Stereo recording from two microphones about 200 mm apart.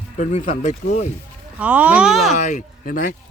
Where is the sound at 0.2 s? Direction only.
35° left (ahead or behind).